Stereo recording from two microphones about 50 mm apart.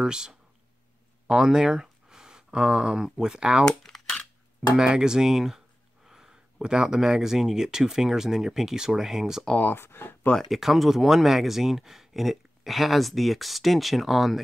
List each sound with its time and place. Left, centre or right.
0.0 s speech: centre
3.6 s a sound: centre
4.7 s speech: centre
6.0 s a sound: centre
6.6 s speech: centre
9.6 s speech: left
10.5 s speech: centre